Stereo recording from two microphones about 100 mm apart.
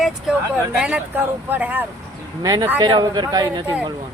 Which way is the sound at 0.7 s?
15° right (ahead or behind).